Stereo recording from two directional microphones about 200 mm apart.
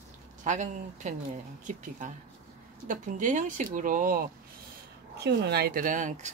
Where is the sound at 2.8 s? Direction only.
40° right (ahead or behind).